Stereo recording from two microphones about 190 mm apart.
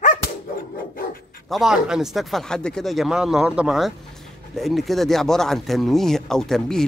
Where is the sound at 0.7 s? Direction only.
50° left (ahead or behind).